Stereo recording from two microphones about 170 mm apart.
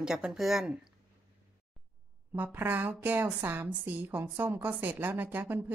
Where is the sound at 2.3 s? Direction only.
10° right (ahead or behind).